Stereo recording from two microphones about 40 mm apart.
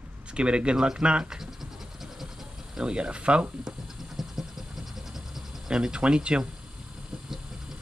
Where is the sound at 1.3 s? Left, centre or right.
Centre.